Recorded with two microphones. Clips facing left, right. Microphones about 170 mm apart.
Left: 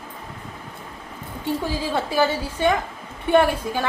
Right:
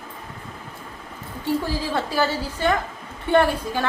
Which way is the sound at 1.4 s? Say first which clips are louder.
Right 1 dB; 15° left (ahead or behind).